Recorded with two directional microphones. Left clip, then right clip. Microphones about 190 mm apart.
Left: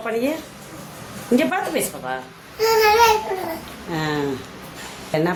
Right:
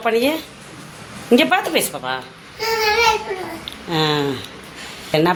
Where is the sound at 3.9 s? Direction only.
15° right (ahead or behind).